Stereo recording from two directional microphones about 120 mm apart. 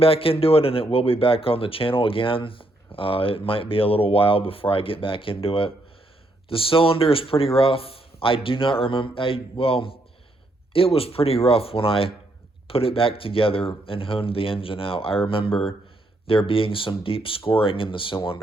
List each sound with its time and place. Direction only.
0.0 s speech: 50° left (ahead or behind)